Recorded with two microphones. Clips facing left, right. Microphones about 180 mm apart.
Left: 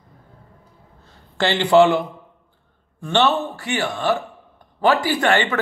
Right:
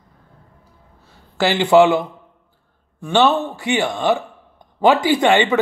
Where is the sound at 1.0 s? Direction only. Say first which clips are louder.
Right 2 dB; 10° right (ahead or behind).